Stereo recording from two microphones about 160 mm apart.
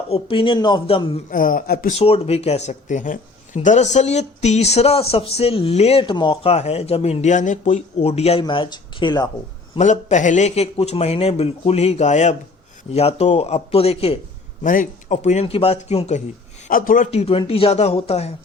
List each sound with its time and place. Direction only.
0.1 s speech: 35° left (ahead or behind)
1.3 s speech: 60° left (ahead or behind)
1.9 s speech: 40° left (ahead or behind)
9.7 s speech: 50° left (ahead or behind)
14.6 s speech: 55° left (ahead or behind)
16.6 s speech: 60° left (ahead or behind); by 18.3 s 40° left (ahead or behind)